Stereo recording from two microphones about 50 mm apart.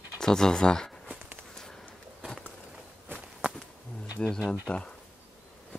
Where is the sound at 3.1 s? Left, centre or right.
Right.